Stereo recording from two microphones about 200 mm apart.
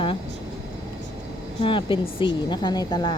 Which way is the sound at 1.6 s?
25° left (ahead or behind).